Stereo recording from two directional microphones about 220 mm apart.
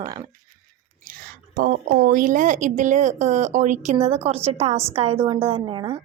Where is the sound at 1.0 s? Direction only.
40° right (ahead or behind).